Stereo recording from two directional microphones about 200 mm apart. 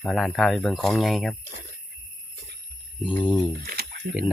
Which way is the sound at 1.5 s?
45° right (ahead or behind).